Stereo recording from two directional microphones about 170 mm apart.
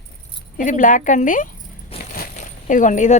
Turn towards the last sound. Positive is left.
turn(degrees=45)  # may be behind; listen again after turning